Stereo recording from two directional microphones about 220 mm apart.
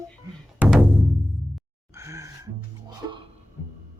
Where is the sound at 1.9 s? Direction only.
15° right (ahead or behind).